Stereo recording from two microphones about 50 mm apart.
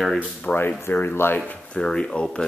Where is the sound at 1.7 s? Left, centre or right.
Centre.